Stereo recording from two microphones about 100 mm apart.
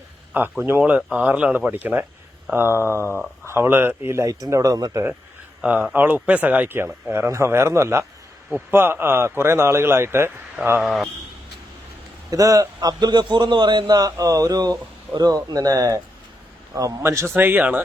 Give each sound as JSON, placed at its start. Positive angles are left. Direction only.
{"t": 0.6, "sound": "speech", "side_deg": -15}
{"t": 2.8, "sound": "a sound", "side_deg": 25}
{"t": 3.4, "sound": "speech", "side_deg": -25}
{"t": 5.6, "sound": "speech", "side_deg": -15}
{"t": 10.8, "sound": "speech", "side_deg": 0}
{"t": 12.3, "sound": "a man's voice", "side_deg": -35}